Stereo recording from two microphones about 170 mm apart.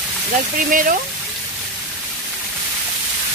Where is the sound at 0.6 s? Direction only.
55° right (ahead or behind).